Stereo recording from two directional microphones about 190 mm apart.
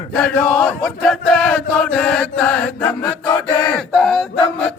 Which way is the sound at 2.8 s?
20° left (ahead or behind).